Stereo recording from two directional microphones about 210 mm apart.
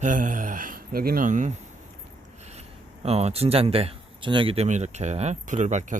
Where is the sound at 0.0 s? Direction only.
40° right (ahead or behind).